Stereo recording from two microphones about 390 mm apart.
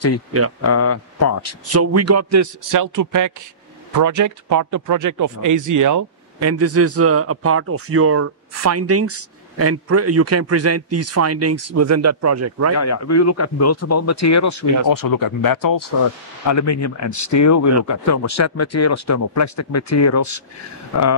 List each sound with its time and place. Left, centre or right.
0.7 s speech: left
1.7 s a man's voice: right
12.7 s speech: left
14.9 s speech: left
16.4 s speech: left